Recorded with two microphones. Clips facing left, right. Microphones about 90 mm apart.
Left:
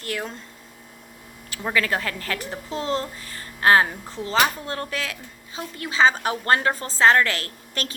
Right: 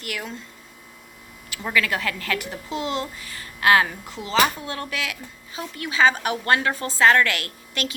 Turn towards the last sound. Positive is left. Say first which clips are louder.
# right 2 dB
turn(degrees=35)  # may be behind; listen again after turning